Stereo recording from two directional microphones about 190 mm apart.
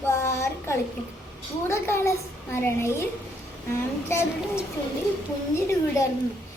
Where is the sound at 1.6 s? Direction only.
15° left (ahead or behind).